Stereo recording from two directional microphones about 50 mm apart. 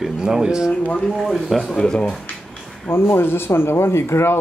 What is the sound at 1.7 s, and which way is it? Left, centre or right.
Speech, centre.